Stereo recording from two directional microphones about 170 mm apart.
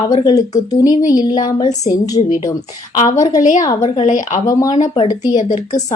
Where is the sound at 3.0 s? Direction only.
45° left (ahead or behind).